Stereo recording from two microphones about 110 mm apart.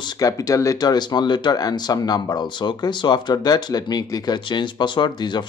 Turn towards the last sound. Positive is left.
turn(degrees=45)  # may be behind; listen again after turning